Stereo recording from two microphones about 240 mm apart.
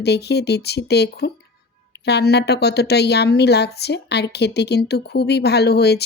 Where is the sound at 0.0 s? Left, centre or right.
Left.